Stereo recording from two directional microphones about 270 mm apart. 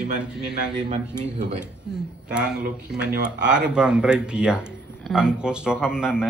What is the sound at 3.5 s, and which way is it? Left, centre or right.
A woman's voice, centre.